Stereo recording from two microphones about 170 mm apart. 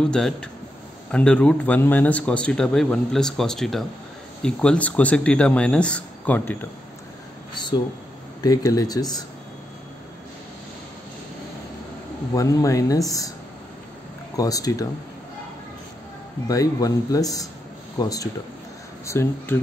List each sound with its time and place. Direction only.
0.0 s a man's voice: 5° left (ahead or behind)
7.5 s speech: 25° left (ahead or behind)
12.4 s speech: 20° left (ahead or behind)
14.3 s speech: 20° left (ahead or behind)
16.4 s speech: 20° left (ahead or behind)